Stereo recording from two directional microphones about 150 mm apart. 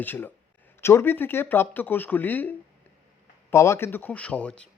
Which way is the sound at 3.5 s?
20° left (ahead or behind).